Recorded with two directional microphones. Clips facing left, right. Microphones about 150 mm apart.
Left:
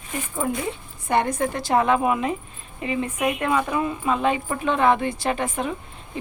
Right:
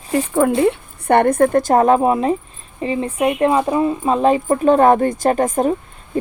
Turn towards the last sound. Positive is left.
turn(degrees=-40)  # may be behind; listen again after turning